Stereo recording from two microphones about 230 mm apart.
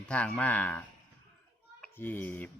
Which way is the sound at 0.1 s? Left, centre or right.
Centre.